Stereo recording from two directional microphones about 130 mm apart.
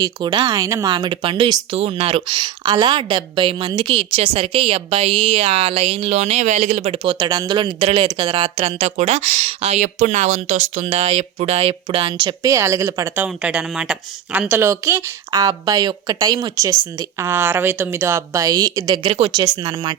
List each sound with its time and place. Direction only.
0.0 s a woman's voice: 35° right (ahead or behind)
0.5 s a woman's voice: 25° right (ahead or behind)
0.9 s a woman's voice: 35° right (ahead or behind)
2.4 s a woman's voice: 35° right (ahead or behind)
3.9 s a woman's voice: 45° right (ahead or behind)
7.8 s a woman's voice: 45° right (ahead or behind)
9.0 s speech: 55° right (ahead or behind)
12.4 s a woman's voice: 25° right (ahead or behind)
13.2 s a woman's voice: 10° right (ahead or behind); by 20.0 s 30° right (ahead or behind)